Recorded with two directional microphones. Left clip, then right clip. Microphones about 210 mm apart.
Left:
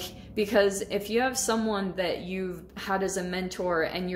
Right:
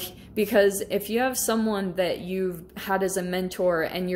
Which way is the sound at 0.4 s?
25° right (ahead or behind).